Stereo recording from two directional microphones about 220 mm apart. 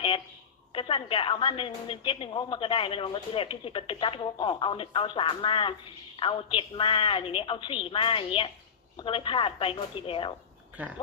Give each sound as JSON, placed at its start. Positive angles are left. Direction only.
{"t": 0.7, "sound": "a woman's voice", "side_deg": 25}
{"t": 10.8, "sound": "speech", "side_deg": -5}